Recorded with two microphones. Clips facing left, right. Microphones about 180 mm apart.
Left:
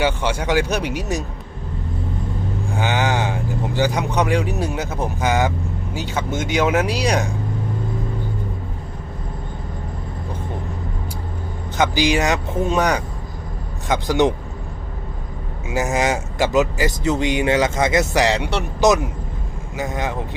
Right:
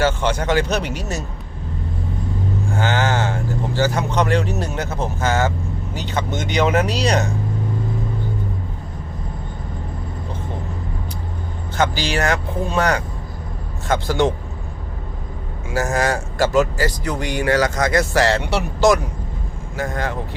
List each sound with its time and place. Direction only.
0.0 s speech: 10° left (ahead or behind)
2.7 s speech: 15° left (ahead or behind)
11.8 s speech: 15° left (ahead or behind)
15.7 s speech: 20° left (ahead or behind)